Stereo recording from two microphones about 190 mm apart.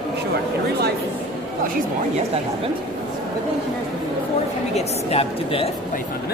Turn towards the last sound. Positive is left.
turn(degrees=30)  # may be behind; listen again after turning